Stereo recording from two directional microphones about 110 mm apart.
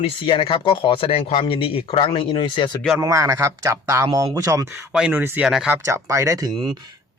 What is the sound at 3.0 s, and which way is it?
A man's voice, 30° right (ahead or behind).